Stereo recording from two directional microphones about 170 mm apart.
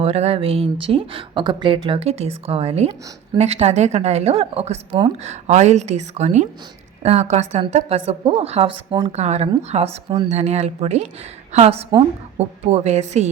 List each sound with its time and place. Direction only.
0.0 s speech: 35° right (ahead or behind)
5.2 s speech: 40° right (ahead or behind)
9.1 s speech: 40° right (ahead or behind)